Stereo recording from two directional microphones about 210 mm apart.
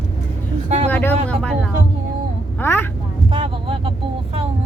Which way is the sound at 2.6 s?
10° left (ahead or behind).